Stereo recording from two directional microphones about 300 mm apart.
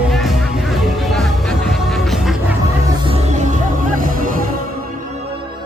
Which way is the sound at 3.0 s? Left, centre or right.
Right.